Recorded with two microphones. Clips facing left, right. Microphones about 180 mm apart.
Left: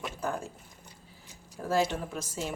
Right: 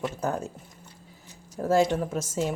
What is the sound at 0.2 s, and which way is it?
Speech, 40° right (ahead or behind).